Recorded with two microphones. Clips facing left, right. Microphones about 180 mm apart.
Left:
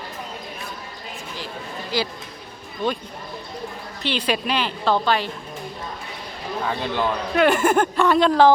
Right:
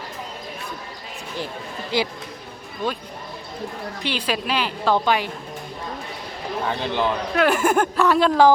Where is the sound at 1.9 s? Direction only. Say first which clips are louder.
Right 2 dB; 25° right (ahead or behind).